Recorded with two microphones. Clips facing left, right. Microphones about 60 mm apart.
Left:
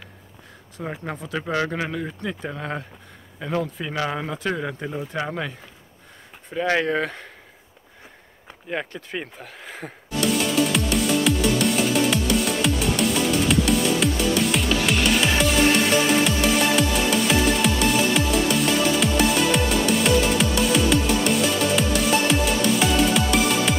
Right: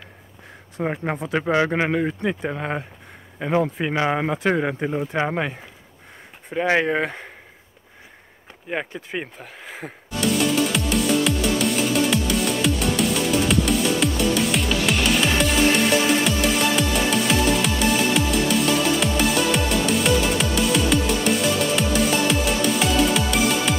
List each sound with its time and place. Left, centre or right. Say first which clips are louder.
0.7 s speech: right 6 dB; right
2.4 s speech: right 4 dB; right
6.5 s speech: right 2 dB; centre
8.6 s music: right 1 dB; centre
17.3 s music: even; centre